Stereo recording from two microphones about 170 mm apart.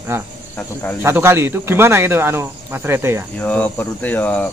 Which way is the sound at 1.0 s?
15° right (ahead or behind).